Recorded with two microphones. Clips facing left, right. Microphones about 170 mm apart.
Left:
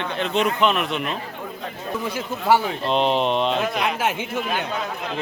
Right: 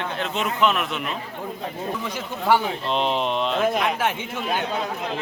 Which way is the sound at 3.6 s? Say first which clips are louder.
Right 2 dB; 45° right (ahead or behind).